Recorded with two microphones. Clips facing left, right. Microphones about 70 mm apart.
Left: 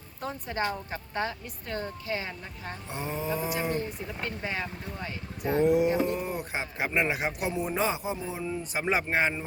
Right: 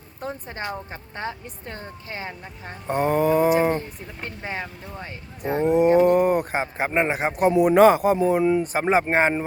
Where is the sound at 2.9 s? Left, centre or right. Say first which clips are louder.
Right 13 dB; right.